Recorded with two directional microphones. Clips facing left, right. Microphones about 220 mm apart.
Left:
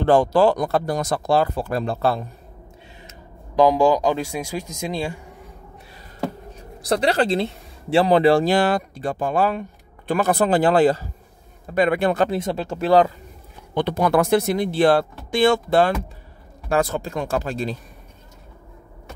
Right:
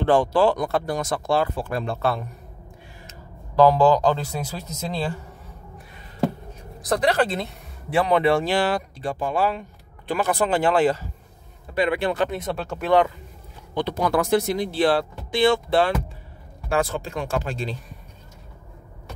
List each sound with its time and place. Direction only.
0.0 s speech: 40° left (ahead or behind)
3.5 s speech: 15° left (ahead or behind)
7.0 s speech: 30° left (ahead or behind)
11.7 s a man's voice: 45° left (ahead or behind)
12.3 s speech: 30° left (ahead or behind)
13.7 s speech: 60° left (ahead or behind); by 17.7 s 40° left (ahead or behind)